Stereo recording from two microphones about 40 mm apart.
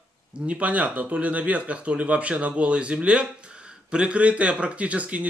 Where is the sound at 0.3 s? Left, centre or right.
Right.